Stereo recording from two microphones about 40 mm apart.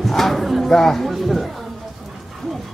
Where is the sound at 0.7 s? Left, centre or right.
Centre.